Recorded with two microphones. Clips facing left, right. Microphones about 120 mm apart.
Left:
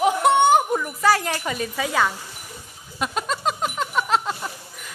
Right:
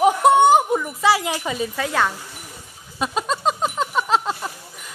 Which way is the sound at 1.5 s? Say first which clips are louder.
Even; centre (ahead or behind).